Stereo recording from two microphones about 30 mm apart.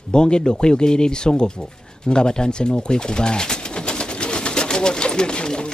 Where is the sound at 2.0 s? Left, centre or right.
Left.